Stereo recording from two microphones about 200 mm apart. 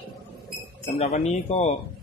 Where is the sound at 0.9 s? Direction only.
30° left (ahead or behind).